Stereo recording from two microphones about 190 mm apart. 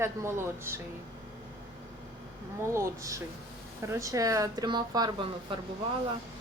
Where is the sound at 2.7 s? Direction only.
15° right (ahead or behind).